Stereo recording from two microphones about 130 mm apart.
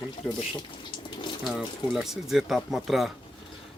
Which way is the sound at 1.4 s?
Centre (ahead or behind).